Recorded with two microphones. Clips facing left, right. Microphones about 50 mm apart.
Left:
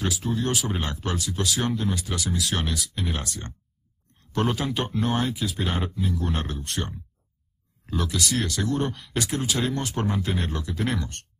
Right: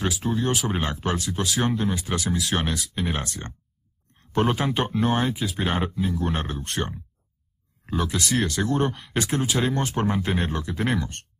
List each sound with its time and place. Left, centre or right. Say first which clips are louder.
0.0 s speech: right 2 dB; right
9.9 s speech: right 3 dB; centre